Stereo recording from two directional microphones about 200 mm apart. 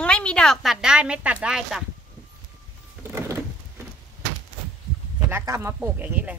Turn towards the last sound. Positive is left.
turn(degrees=-5)  # may be behind; listen again after turning